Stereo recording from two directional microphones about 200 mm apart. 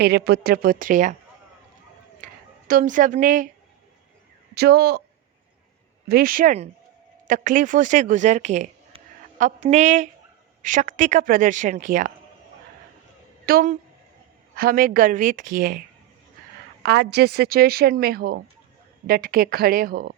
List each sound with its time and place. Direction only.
0.0 s a woman's voice: 55° right (ahead or behind)
2.2 s speech: 40° right (ahead or behind)
4.5 s a woman's voice: 50° right (ahead or behind)
6.1 s a woman's voice: 50° right (ahead or behind)
13.4 s a woman's voice: 45° right (ahead or behind)
16.8 s a woman's voice: 55° right (ahead or behind)